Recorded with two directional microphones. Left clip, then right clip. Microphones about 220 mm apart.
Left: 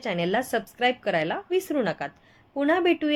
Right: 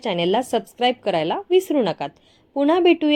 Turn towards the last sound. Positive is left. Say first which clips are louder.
# right 6 dB
turn(degrees=-20)  # may be behind; listen again after turning